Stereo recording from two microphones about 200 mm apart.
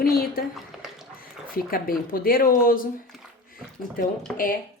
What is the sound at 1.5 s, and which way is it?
Speech, 45° left (ahead or behind).